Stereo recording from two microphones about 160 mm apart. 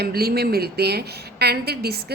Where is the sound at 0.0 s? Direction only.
75° right (ahead or behind).